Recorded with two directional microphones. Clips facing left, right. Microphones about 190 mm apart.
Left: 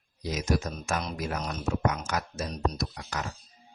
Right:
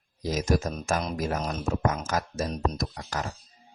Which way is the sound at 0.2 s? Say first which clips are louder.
Right 3 dB; 45° right (ahead or behind).